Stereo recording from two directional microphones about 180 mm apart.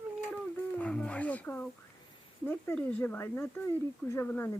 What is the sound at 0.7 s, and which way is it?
Wild animals, 5° left (ahead or behind).